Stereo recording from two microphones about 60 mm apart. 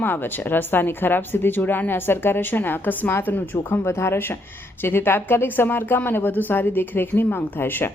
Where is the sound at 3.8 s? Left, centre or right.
Left.